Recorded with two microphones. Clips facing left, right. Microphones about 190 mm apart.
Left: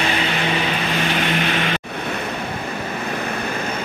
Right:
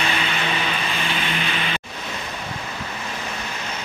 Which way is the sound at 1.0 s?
55° left (ahead or behind).